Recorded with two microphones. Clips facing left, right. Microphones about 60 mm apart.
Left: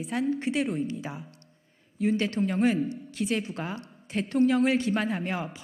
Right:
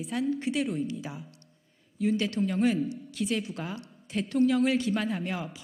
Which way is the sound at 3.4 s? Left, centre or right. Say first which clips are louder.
Left 2 dB; left.